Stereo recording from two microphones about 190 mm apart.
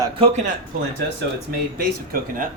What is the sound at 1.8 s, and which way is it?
Speech, 50° right (ahead or behind).